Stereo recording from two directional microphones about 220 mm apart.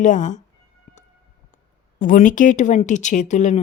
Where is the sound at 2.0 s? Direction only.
40° left (ahead or behind).